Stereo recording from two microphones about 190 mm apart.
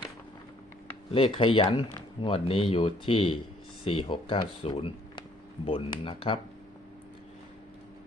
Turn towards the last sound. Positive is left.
turn(degrees=30)  # may be behind; listen again after turning